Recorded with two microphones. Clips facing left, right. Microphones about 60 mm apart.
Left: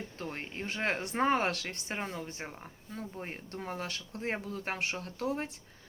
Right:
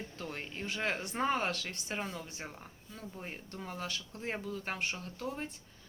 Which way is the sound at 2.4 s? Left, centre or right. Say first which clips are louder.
Left 2 dB; left.